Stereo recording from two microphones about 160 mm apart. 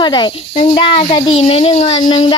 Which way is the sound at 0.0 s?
25° left (ahead or behind).